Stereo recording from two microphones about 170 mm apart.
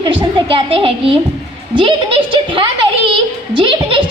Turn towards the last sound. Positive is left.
turn(degrees=-30)  # may be behind; listen again after turning